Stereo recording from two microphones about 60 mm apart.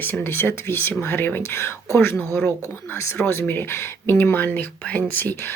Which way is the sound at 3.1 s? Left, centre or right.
Left.